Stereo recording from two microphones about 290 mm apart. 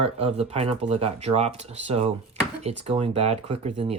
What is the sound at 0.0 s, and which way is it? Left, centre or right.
Speech, right.